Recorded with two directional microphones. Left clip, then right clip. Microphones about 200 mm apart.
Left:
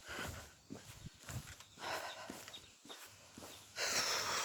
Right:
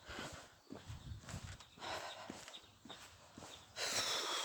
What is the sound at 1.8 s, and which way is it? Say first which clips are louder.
Horse: left 2 dB; 10° right (ahead or behind).